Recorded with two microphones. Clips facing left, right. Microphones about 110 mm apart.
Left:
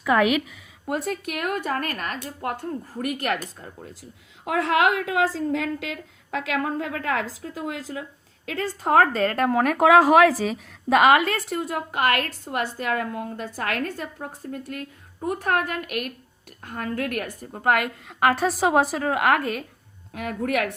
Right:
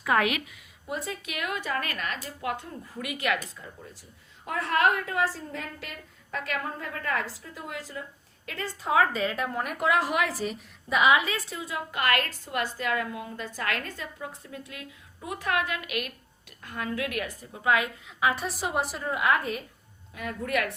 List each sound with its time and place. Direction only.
0.9 s a woman's voice: 65° left (ahead or behind); by 3.3 s 45° left (ahead or behind)
4.4 s a woman's voice: 80° left
5.2 s a woman's voice: 60° left (ahead or behind); by 9.9 s 90° left
10.4 s a woman's voice: 75° left (ahead or behind)
20.1 s a woman's voice: 60° left (ahead or behind)